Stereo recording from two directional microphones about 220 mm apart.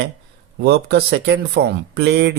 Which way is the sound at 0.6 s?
50° right (ahead or behind).